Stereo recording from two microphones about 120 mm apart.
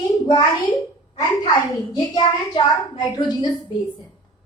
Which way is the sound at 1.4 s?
40° left (ahead or behind).